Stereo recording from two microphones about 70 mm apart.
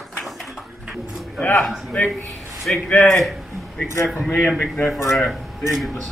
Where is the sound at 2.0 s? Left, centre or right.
Left.